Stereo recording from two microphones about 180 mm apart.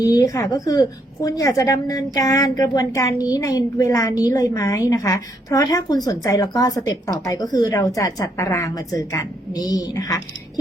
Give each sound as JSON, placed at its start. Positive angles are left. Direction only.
{"t": 0.0, "sound": "a woman's voice", "side_deg": 20}